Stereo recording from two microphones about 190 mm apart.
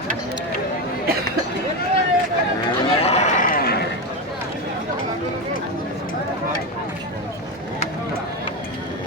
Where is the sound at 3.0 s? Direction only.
35° left (ahead or behind).